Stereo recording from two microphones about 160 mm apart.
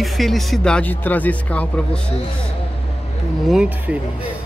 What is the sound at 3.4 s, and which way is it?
Speech, 5° right (ahead or behind).